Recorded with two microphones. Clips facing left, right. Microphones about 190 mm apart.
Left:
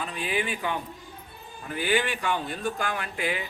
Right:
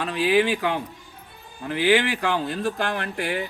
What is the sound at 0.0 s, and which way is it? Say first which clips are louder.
Speech: right 9 dB; 85° right.